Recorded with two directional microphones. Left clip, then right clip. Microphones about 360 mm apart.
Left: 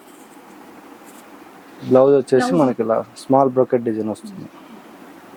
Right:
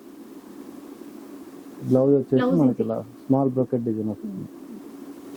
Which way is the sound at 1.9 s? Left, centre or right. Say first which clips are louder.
Left 7 dB; centre.